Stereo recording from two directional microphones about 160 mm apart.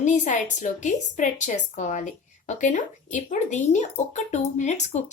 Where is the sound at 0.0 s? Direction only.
50° left (ahead or behind).